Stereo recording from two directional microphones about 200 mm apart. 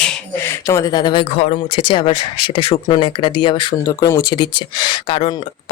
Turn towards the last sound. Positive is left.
turn(degrees=25)  # may be behind; listen again after turning